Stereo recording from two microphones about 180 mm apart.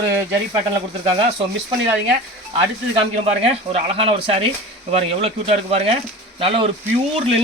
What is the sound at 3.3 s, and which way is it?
Speech, 35° right (ahead or behind).